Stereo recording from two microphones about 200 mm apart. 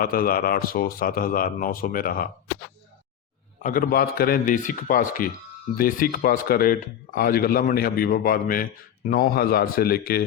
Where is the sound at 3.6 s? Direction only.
45° left (ahead or behind).